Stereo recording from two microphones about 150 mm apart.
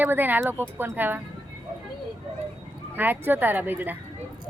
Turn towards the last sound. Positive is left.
turn(degrees=-15)  # may be behind; listen again after turning